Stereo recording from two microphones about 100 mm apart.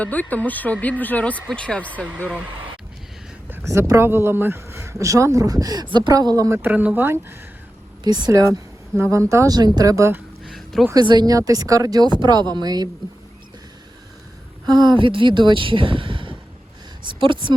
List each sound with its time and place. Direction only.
0.0 s speech: 15° left (ahead or behind)
3.5 s speech: 25° right (ahead or behind)
6.6 s speech: 15° right (ahead or behind)
8.0 s speech: 45° right (ahead or behind)
9.6 s speech: 45° right (ahead or behind)
10.4 s a sound: centre (ahead or behind)
10.9 s speech: 50° right (ahead or behind)
11.3 s speech: 35° right (ahead or behind)
14.7 s speech: 45° right (ahead or behind)